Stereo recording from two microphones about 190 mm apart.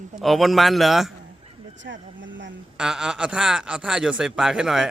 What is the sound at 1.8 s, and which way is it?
Speech, 75° right (ahead or behind).